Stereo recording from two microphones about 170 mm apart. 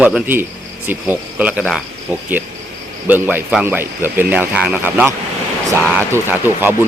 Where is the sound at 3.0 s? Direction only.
10° right (ahead or behind).